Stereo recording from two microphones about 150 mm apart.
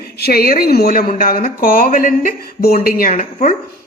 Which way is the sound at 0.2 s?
90° left.